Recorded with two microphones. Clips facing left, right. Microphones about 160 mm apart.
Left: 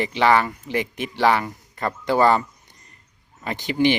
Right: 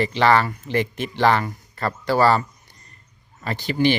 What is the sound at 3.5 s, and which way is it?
Speech, 15° left (ahead or behind).